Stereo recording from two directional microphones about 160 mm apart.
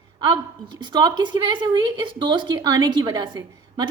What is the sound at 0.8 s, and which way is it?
A woman's voice, 25° right (ahead or behind).